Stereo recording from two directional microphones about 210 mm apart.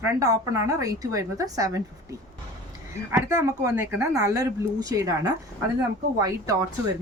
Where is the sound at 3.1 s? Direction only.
10° right (ahead or behind).